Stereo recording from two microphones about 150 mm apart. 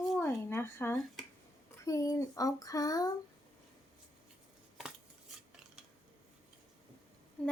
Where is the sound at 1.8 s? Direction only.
20° left (ahead or behind).